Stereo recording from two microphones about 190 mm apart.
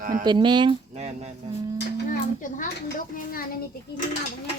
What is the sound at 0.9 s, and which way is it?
Speech, 35° right (ahead or behind).